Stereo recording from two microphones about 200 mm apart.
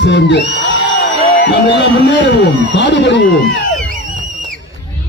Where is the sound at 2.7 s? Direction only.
60° left (ahead or behind).